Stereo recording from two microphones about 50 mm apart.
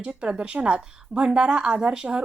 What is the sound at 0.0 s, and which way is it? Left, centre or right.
Speech, centre.